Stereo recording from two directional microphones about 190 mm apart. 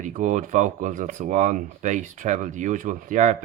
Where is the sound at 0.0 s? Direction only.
40° right (ahead or behind).